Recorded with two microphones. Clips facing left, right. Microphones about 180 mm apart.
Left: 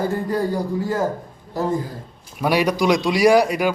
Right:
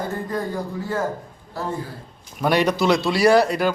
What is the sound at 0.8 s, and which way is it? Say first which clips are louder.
Speech: left 1 dB; 40° left (ahead or behind).